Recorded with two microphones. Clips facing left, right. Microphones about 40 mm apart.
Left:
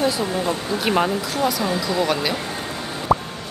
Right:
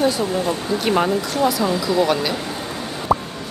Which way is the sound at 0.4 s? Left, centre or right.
Left.